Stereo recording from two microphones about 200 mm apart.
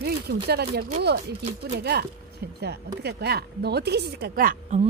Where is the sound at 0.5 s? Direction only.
55° right (ahead or behind).